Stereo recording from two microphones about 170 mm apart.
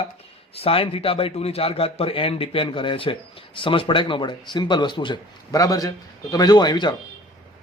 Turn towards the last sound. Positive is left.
turn(degrees=25)  # may be behind; listen again after turning